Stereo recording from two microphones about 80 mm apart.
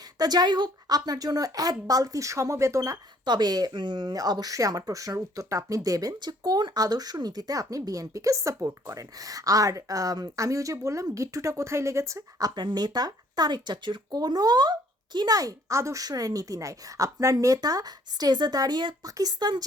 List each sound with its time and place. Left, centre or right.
0.2 s speech: right
3.2 s speech: right
15.4 s speech: right
19.0 s a woman's voice: right